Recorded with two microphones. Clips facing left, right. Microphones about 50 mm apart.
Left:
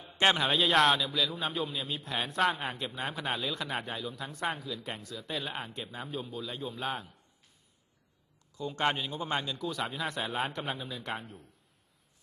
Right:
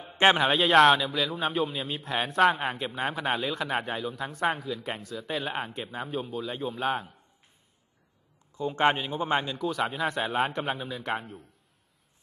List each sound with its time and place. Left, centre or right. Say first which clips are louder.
0.0 s a sound: right 5 dB; right
0.4 s a man's voice: right 6 dB; centre
8.5 s a man's voice: right 6 dB; right
9.6 s a man's voice: right 6 dB; centre